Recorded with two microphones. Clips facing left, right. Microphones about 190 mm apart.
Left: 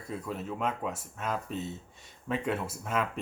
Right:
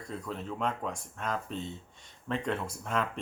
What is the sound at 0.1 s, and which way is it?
Speech, 5° left (ahead or behind).